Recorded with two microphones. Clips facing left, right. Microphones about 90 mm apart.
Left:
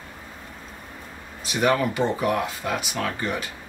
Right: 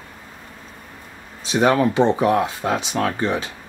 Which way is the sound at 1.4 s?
25° right (ahead or behind).